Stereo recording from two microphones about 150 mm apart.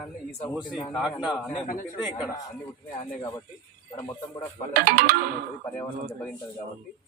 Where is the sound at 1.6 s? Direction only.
65° left (ahead or behind).